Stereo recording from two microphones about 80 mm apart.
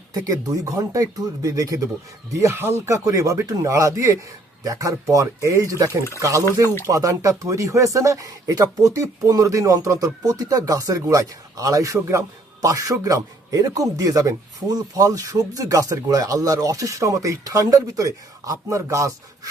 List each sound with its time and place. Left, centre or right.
0.1 s speech: right
2.4 s speech: right